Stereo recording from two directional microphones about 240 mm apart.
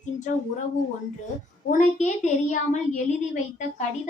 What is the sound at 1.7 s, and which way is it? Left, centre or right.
A woman's voice, left.